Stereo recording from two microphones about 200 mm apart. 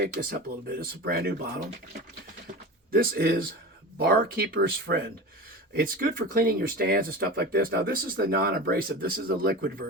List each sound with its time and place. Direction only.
0.0 s speech: 50° right (ahead or behind)